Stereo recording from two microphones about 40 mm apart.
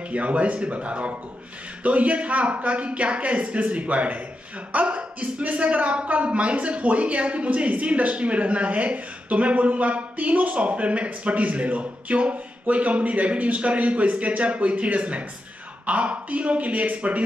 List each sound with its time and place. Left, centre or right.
0.1 s speech: right